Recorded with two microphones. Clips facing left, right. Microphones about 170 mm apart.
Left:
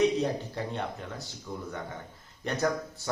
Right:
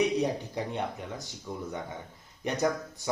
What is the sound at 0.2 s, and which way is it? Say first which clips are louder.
Speech: right 1 dB; 15° right (ahead or behind).